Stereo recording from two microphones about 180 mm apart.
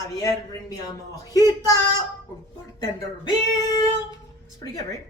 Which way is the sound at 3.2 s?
20° left (ahead or behind).